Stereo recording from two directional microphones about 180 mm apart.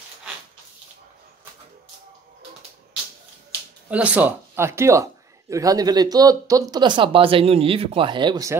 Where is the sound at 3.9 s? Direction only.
10° right (ahead or behind).